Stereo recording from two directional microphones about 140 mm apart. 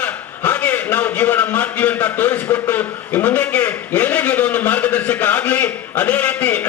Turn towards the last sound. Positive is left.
turn(degrees=10)  # may be behind; listen again after turning